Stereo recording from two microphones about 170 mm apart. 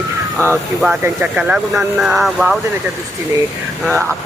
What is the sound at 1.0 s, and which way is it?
Speech, 10° right (ahead or behind).